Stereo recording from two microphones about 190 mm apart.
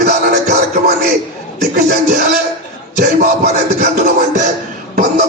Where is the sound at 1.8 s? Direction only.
45° right (ahead or behind).